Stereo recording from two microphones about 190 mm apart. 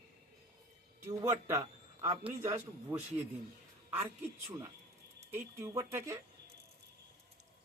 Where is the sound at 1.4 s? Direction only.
15° right (ahead or behind).